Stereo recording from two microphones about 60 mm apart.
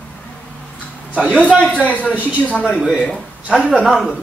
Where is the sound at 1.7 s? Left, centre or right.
Left.